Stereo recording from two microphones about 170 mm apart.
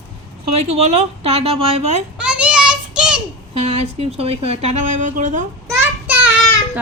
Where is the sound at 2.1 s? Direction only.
5° right (ahead or behind).